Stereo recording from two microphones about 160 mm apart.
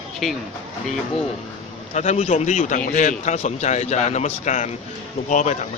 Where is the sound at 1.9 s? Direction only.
45° left (ahead or behind).